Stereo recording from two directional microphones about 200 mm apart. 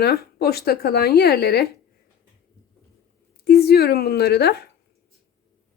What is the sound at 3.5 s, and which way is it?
A woman's voice, 55° left (ahead or behind).